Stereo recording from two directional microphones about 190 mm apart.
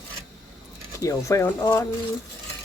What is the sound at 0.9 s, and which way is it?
Speech, 15° left (ahead or behind).